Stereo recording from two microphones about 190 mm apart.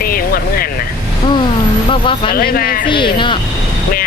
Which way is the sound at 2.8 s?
25° left (ahead or behind).